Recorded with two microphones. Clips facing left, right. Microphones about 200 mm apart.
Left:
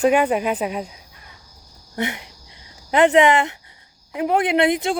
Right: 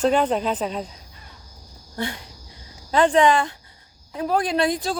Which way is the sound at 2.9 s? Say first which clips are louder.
Left 2 dB; 20° left (ahead or behind).